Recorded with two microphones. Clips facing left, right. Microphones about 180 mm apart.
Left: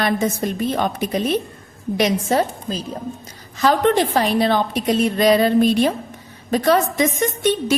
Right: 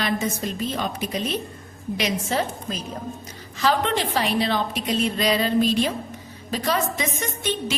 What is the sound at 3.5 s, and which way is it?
A woman's voice, 45° left (ahead or behind).